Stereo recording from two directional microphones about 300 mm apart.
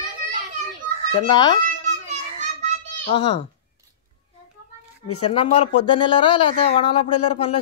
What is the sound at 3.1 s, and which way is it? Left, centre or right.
Speech, centre.